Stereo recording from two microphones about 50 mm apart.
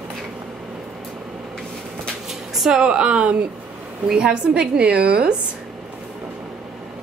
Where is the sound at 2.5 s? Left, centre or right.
Centre.